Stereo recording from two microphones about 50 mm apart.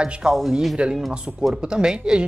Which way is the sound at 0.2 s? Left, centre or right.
Centre.